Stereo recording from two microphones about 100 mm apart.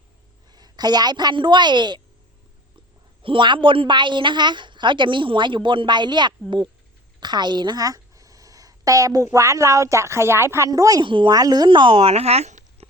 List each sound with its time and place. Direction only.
0.5 s a woman's voice: 45° right (ahead or behind)
3.2 s a woman's voice: 55° right (ahead or behind); by 10.7 s 25° right (ahead or behind)
10.7 s speech: 35° right (ahead or behind)
11.0 s speech: 55° right (ahead or behind)
11.3 s speech: 40° right (ahead or behind); by 12.9 s 90° right